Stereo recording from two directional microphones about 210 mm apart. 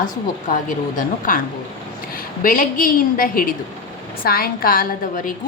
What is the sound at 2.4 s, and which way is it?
A woman's voice, 40° left (ahead or behind).